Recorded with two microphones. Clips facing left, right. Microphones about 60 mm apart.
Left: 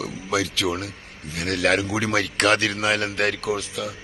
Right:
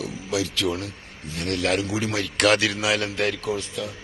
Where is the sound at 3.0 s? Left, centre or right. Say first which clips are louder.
Left 2 dB; left.